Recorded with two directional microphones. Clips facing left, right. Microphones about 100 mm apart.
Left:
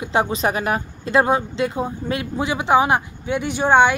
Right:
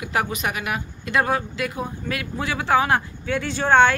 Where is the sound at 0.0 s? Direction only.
25° left (ahead or behind).